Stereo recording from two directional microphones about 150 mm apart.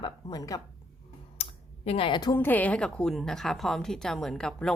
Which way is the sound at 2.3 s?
10° left (ahead or behind).